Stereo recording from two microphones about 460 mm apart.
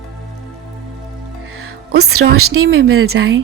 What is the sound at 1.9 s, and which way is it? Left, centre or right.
A woman's voice, right.